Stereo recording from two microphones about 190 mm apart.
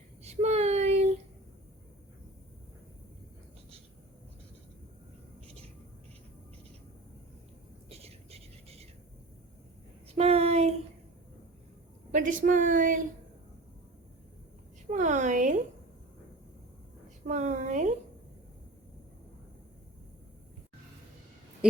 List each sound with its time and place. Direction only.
0.2 s child singing: 35° right (ahead or behind)
7.9 s whispering: 30° right (ahead or behind)
10.2 s child singing: 30° right (ahead or behind)
12.1 s speech: 45° right (ahead or behind)
14.8 s a sound: 40° right (ahead or behind)
17.2 s a sound: 40° right (ahead or behind)